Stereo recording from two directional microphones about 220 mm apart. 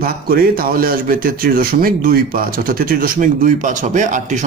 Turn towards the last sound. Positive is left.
turn(degrees=-35)  # may be behind; listen again after turning